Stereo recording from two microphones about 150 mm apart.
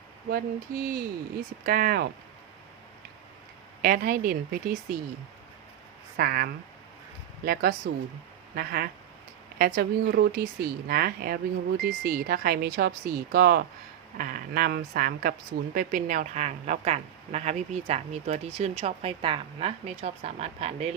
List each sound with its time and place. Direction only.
0.3 s speech: 80° right
3.8 s speech: 75° right (ahead or behind)
6.1 s speech: 90° right
14.2 s a woman's voice: 70° right (ahead or behind); by 20.9 s 45° right (ahead or behind)